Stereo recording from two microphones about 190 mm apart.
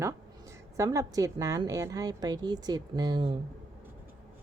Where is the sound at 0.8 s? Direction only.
15° right (ahead or behind).